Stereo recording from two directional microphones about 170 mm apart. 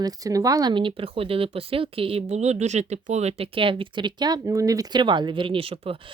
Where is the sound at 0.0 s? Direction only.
20° right (ahead or behind).